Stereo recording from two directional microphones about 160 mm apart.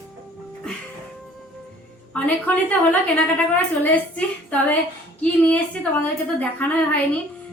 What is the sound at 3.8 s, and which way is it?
A woman's voice, 10° left (ahead or behind).